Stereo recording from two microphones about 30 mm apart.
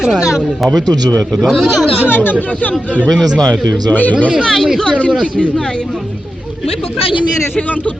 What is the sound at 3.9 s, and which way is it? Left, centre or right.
Speech, left.